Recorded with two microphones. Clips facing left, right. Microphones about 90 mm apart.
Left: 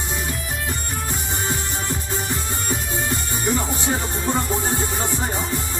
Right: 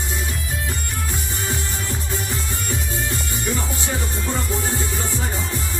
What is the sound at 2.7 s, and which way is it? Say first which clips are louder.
Music: left 2 dB; 25° left (ahead or behind).